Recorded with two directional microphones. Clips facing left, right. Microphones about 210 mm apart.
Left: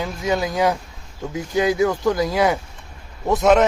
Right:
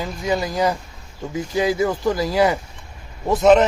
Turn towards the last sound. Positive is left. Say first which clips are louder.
# right 1 dB
turn(degrees=0)  # may be behind; listen again after turning